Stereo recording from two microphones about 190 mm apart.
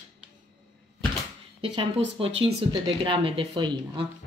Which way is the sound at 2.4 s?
30° right (ahead or behind).